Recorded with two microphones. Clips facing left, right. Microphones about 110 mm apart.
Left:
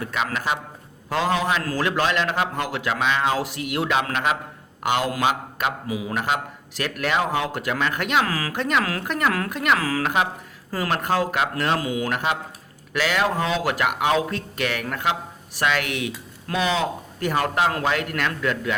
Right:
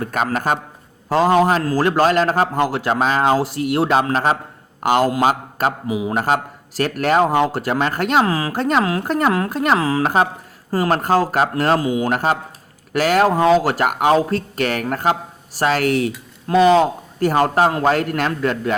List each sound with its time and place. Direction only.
0.0 s a man's voice: 45° right (ahead or behind)
5.9 s a man's voice: 25° right (ahead or behind)
6.1 s speech: 40° right (ahead or behind)